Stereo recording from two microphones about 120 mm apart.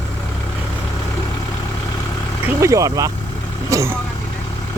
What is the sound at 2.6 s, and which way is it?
Speech, 30° right (ahead or behind).